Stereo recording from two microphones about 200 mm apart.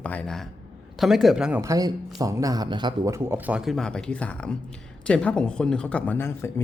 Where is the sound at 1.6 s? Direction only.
15° right (ahead or behind).